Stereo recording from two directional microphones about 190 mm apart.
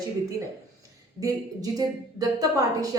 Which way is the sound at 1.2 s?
20° right (ahead or behind).